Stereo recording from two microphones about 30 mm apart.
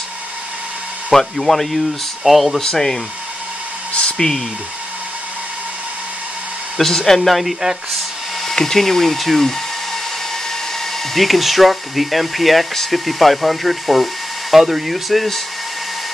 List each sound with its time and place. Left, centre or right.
1.1 s speech: centre
2.6 s speech: centre
4.2 s speech: centre
7.1 s speech: centre
8.5 s speech: centre
11.1 s speech: centre